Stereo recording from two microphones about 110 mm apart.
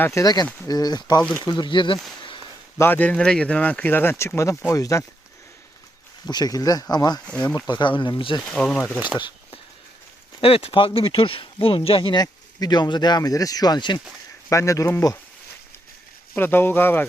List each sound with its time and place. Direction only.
0.0 s speech: 30° left (ahead or behind)
1.2 s speech: 10° left (ahead or behind)
1.5 s speech: 40° left (ahead or behind)
2.7 s speech: 20° left (ahead or behind)
6.2 s speech: 35° left (ahead or behind)
7.3 s speech: 15° left (ahead or behind)
7.7 s speech: 45° left (ahead or behind)
8.4 s speech: 10° left (ahead or behind)
9.0 s speech: 15° right (ahead or behind)
10.4 s speech: 60° left (ahead or behind)
12.1 s speech: 35° left (ahead or behind)
14.5 s speech: 30° left (ahead or behind)
16.4 s speech: 20° left (ahead or behind)